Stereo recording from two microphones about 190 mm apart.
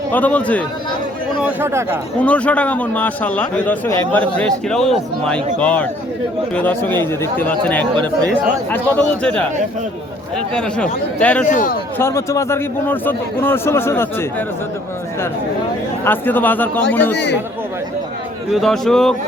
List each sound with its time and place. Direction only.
0.1 s a man's voice: 10° left (ahead or behind)
1.4 s speech: 10° right (ahead or behind)
2.2 s a man's voice: 5° left (ahead or behind)
10.5 s a man's voice: 5° left (ahead or behind)
11.4 s a man's voice: 45° left (ahead or behind)
11.9 s a man's voice: 15° left (ahead or behind)
16.0 s a man's voice: 10° left (ahead or behind)
18.5 s a man's voice: centre (ahead or behind)